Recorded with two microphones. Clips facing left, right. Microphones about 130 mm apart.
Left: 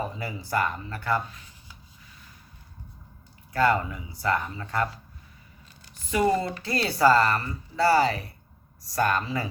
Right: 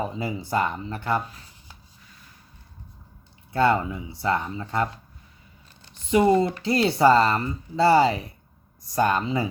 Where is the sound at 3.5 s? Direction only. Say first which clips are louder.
Right 2 dB; 25° right (ahead or behind).